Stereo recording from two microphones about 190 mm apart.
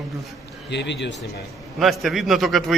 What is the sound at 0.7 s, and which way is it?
Speech, 65° left (ahead or behind).